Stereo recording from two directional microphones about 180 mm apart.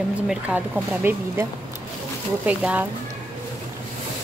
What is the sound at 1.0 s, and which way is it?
Speech, 10° right (ahead or behind).